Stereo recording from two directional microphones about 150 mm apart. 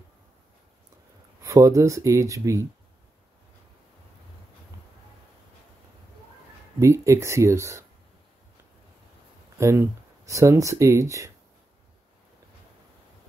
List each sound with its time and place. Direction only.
1.4 s speech: 20° right (ahead or behind)
6.8 s speech: 20° right (ahead or behind)
9.6 s speech: 20° right (ahead or behind)